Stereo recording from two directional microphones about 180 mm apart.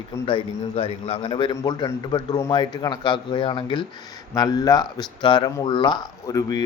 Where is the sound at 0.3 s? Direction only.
30° left (ahead or behind).